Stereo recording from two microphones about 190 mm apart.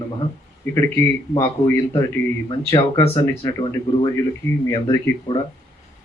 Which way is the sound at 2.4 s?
25° left (ahead or behind).